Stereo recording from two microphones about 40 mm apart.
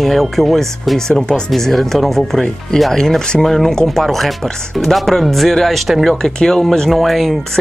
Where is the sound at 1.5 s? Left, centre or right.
Centre.